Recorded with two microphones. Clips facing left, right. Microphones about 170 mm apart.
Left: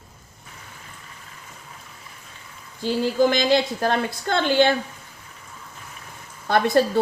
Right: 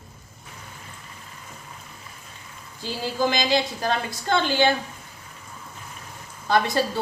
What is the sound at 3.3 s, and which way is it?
A woman's voice, 55° left (ahead or behind).